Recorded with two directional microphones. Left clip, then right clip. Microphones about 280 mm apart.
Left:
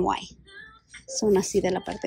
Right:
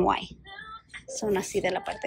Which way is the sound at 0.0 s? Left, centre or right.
Centre.